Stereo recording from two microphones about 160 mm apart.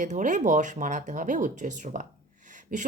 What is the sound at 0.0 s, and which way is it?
Speech, 50° right (ahead or behind).